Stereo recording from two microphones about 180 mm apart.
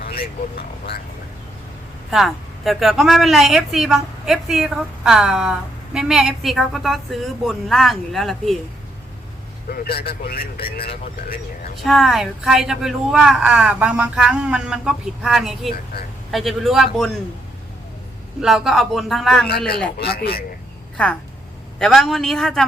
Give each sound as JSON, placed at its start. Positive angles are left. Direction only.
{"t": 0.0, "sound": "speech", "side_deg": 55}
{"t": 2.0, "sound": "speech", "side_deg": 0}
{"t": 9.6, "sound": "speech", "side_deg": 55}
{"t": 11.8, "sound": "speech", "side_deg": 0}
{"t": 15.7, "sound": "speech", "side_deg": 55}
{"t": 16.3, "sound": "speech", "side_deg": 0}
{"t": 18.3, "sound": "speech", "side_deg": 0}
{"t": 19.5, "sound": "speech", "side_deg": 60}
{"t": 21.8, "sound": "speech", "side_deg": 0}